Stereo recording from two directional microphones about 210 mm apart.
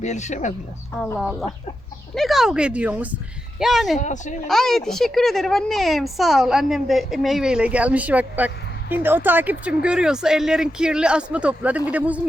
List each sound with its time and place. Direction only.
0.0 s speech: 35° left (ahead or behind)
0.9 s speech: centre (ahead or behind)
3.9 s speech: 35° left (ahead or behind)
4.4 s speech: centre (ahead or behind)